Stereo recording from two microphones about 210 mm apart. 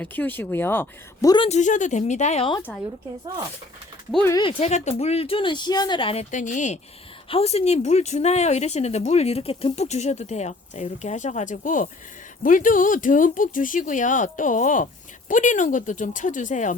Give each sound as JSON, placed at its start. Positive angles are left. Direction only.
{"t": 0.0, "sound": "speech", "side_deg": 10}
{"t": 1.5, "sound": "speech", "side_deg": 35}
{"t": 4.1, "sound": "speech", "side_deg": 10}
{"t": 4.4, "sound": "speech", "side_deg": 25}